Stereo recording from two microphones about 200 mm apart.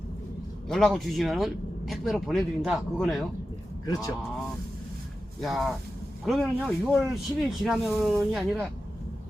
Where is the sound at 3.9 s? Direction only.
15° left (ahead or behind).